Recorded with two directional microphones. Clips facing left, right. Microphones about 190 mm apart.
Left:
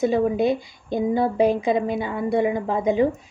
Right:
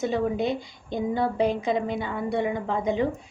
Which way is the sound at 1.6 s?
15° left (ahead or behind).